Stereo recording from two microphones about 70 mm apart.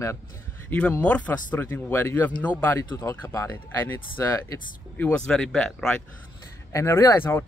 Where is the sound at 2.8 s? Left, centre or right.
Left.